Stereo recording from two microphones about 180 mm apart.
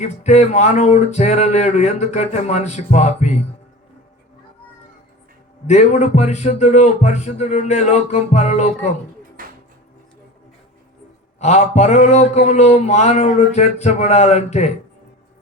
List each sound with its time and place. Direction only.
0.0 s speech: 40° left (ahead or behind)
5.6 s speech: 40° left (ahead or behind)
9.4 s music: 50° right (ahead or behind)
11.3 s speech: 40° left (ahead or behind)